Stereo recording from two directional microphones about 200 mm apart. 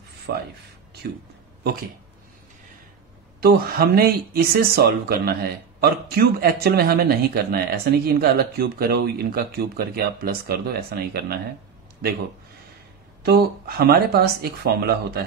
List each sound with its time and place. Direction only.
0.3 s speech: 55° right (ahead or behind)
3.3 s speech: 50° right (ahead or behind)
13.2 s speech: 50° right (ahead or behind)